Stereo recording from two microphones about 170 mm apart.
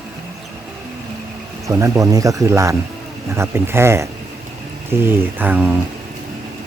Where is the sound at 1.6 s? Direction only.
20° right (ahead or behind).